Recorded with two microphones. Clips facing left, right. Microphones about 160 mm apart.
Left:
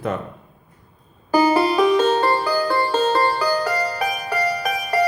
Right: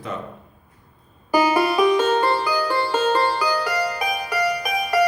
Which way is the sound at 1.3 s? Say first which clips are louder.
Left 2 dB; 30° left (ahead or behind).